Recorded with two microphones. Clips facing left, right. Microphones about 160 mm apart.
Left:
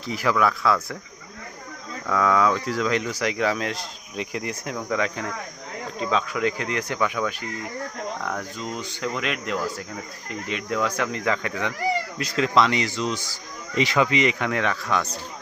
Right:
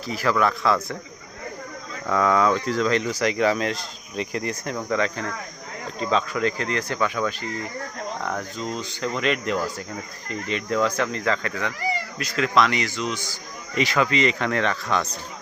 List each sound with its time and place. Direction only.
0.0 s speech: 20° left (ahead or behind)
0.3 s speech: 5° left (ahead or behind)
2.0 s speech: centre (ahead or behind)
8.6 s speech: 5° left (ahead or behind)